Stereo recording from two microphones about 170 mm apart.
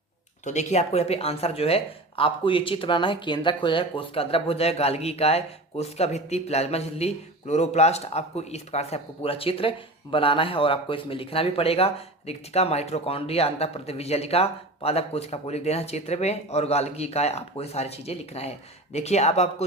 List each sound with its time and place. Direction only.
0.4 s speech: 45° left (ahead or behind)